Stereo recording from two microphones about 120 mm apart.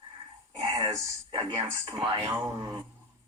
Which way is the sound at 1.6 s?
25° right (ahead or behind).